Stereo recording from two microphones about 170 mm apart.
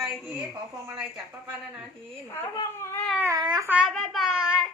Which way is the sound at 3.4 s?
25° right (ahead or behind).